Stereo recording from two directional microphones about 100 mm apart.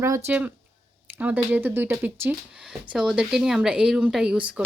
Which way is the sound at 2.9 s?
10° right (ahead or behind).